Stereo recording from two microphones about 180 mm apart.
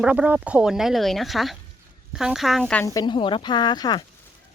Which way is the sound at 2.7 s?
15° left (ahead or behind).